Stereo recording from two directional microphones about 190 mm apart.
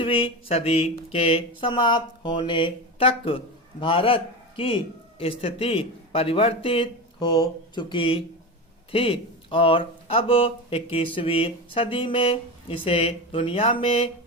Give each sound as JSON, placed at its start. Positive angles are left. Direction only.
{"t": 0.0, "sound": "speech", "side_deg": 30}